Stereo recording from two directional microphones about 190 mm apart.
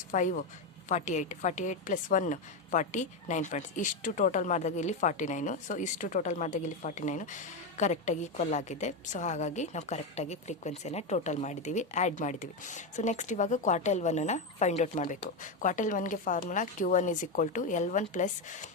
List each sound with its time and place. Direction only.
0.1 s a woman's voice: 45° left (ahead or behind)